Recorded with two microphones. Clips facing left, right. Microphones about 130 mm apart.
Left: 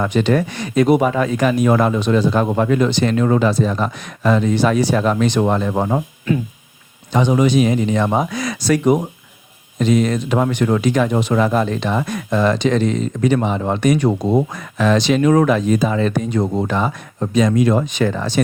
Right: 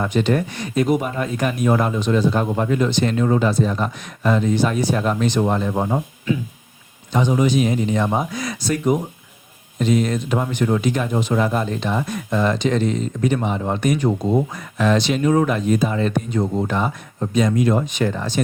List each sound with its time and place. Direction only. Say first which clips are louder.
0.0 s speech: left 3 dB; 90° left
7.1 s speech: left 3 dB; 80° left